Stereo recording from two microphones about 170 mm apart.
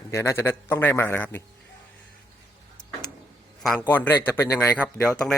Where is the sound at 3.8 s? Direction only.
10° left (ahead or behind).